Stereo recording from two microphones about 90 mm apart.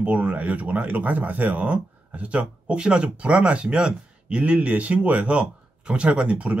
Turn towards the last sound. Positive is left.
turn(degrees=-15)  # may be behind; listen again after turning